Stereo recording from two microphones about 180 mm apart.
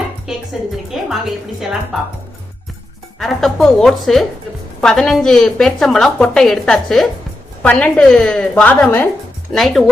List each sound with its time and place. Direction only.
0.3 s music: centre (ahead or behind)
0.9 s a woman's voice: centre (ahead or behind)
3.2 s a woman's voice: centre (ahead or behind)